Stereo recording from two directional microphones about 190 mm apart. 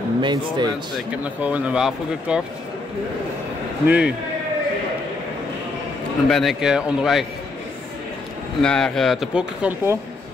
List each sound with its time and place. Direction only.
0.2 s speech: 25° right (ahead or behind)
0.9 s speech: 5° right (ahead or behind)
3.8 s a man's voice: 5° right (ahead or behind)
6.2 s speech: centre (ahead or behind)
8.6 s speech: 5° left (ahead or behind)